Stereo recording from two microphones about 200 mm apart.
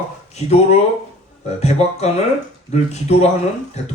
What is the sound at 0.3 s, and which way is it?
Speech, 30° left (ahead or behind).